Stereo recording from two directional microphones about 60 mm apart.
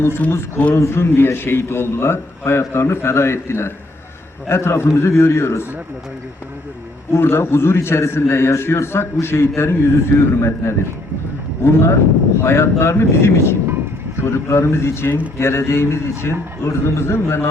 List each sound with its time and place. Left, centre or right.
0.3 s a man's voice: left
7.1 s a man's voice: left